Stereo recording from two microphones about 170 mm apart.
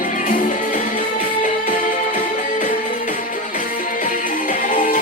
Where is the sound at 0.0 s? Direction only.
50° left (ahead or behind).